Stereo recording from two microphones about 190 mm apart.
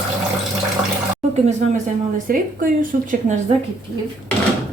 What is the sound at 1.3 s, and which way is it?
A woman's voice, 40° right (ahead or behind).